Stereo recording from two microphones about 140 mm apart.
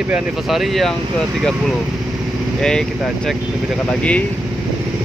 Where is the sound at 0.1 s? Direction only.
Centre (ahead or behind).